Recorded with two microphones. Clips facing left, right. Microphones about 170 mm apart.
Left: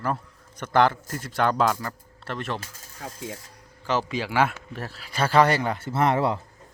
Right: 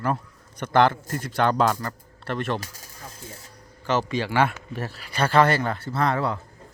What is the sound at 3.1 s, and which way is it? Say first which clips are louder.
Speech: left 7 dB; 90° left.